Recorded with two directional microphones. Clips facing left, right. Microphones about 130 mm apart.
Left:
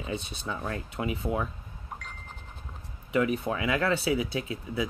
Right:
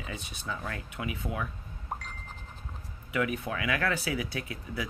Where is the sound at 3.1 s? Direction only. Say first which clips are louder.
Left 4 dB; 30° left (ahead or behind).